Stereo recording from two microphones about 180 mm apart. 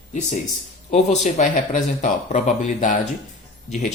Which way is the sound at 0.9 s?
40° left (ahead or behind).